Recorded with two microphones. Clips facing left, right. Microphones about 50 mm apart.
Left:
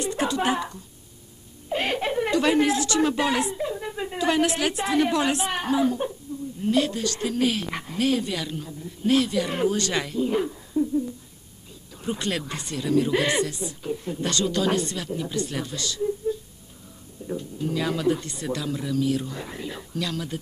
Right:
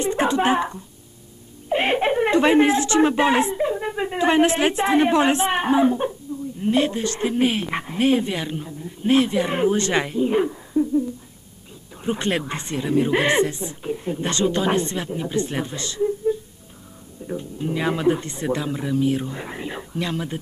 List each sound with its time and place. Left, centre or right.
0.0 s a woman's voice: right
12.0 s speech: right